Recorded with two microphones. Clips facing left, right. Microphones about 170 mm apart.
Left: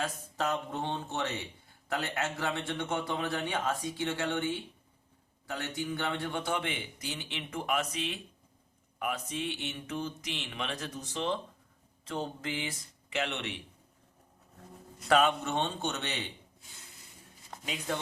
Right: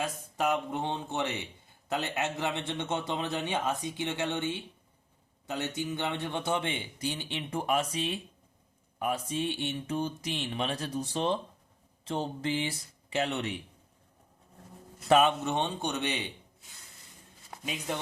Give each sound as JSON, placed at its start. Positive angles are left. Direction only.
{"t": 0.0, "sound": "a man's voice", "side_deg": -15}
{"t": 9.0, "sound": "mantra", "side_deg": -30}
{"t": 15.0, "sound": "speech", "side_deg": -25}
{"t": 17.7, "sound": "speech", "side_deg": -15}